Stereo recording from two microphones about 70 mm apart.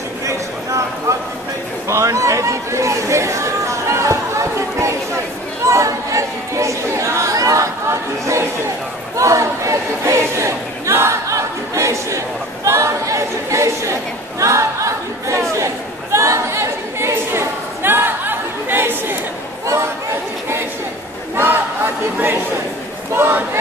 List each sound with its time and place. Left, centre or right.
1.9 s chatter: right
9.1 s a sound: right
12.6 s chatter: right
14.4 s choir: right
15.6 s chatter: right
21.4 s crowd: right
23.1 s speech: right